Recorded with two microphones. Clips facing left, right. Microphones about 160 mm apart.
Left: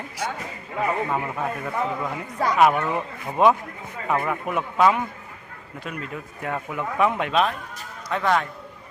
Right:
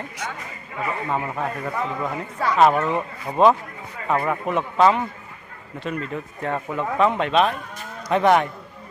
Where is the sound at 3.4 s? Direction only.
10° left (ahead or behind).